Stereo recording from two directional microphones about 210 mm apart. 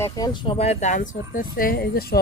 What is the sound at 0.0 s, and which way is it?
Speech, 20° left (ahead or behind).